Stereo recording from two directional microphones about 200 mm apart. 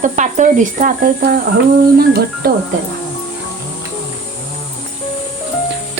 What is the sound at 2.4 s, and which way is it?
Speech, 50° right (ahead or behind).